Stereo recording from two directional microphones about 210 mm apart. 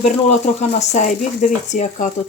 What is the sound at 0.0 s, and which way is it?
Speech, 30° left (ahead or behind).